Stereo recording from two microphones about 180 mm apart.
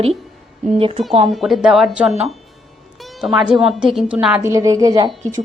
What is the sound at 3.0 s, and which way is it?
Music, centre (ahead or behind).